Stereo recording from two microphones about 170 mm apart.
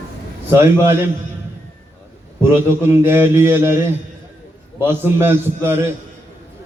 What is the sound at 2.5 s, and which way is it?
A man's voice, 15° right (ahead or behind).